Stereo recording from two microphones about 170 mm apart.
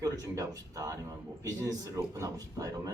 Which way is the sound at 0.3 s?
20° right (ahead or behind).